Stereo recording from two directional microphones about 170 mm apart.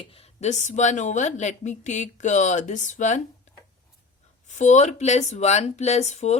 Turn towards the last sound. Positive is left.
turn(degrees=40)  # may be behind; listen again after turning